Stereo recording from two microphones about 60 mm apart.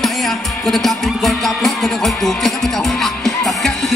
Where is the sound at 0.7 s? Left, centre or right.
Centre.